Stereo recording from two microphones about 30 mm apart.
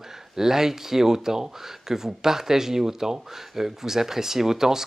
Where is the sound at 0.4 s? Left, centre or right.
Centre.